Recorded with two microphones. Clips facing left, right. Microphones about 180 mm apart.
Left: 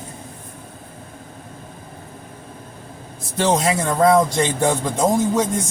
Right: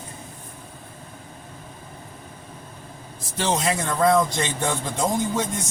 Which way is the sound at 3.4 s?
45° left (ahead or behind).